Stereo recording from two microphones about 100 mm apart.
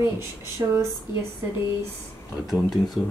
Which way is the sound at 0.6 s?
40° right (ahead or behind).